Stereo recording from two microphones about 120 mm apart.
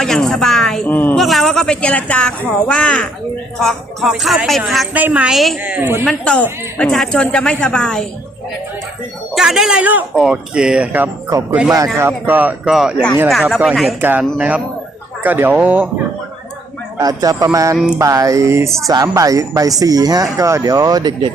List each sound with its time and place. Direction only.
0.0 s a sound: 5° left (ahead or behind)
0.9 s a sound: 15° left (ahead or behind)
1.1 s speech: centre (ahead or behind)
4.9 s speech: 15° right (ahead or behind)
5.3 s speech: centre (ahead or behind)
5.6 s speech: 15° right (ahead or behind)
6.1 s a woman's voice: 10° left (ahead or behind)
9.3 s speech: 5° right (ahead or behind)
11.3 s speech: 30° right (ahead or behind)
11.9 s speech: 20° right (ahead or behind)
17.0 s speech: 30° right (ahead or behind)
17.7 s speech: 10° right (ahead or behind)
18.0 s speech: 25° right (ahead or behind)